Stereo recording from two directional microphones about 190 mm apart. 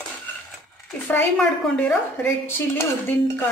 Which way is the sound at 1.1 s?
5° left (ahead or behind).